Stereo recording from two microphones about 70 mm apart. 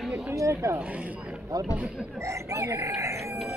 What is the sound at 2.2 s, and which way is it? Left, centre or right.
Speech, right.